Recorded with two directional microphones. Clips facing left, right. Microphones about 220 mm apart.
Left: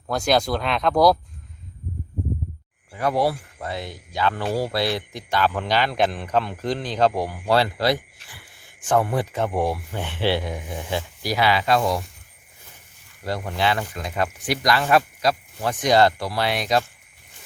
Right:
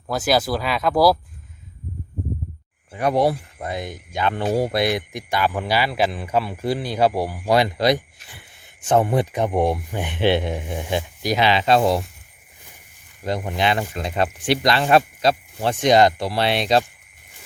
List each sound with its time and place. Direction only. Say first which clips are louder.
0.1 s speech: right 1 dB; 5° right (ahead or behind)
2.9 s speech: right 3 dB; 20° right (ahead or behind)
13.2 s speech: right 2 dB; 20° right (ahead or behind)